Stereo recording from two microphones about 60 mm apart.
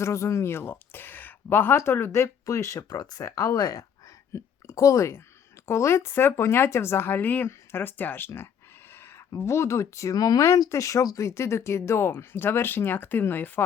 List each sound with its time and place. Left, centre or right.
0.0 s speech: left
1.7 s speech: left
2.1 s speech: left
4.3 s a woman's voice: left
9.0 s speech: left
11.3 s speech: left